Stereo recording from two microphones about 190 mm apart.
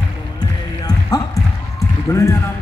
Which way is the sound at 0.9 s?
20° left (ahead or behind).